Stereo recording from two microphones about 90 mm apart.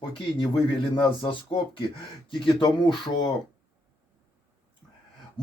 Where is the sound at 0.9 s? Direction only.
65° left (ahead or behind).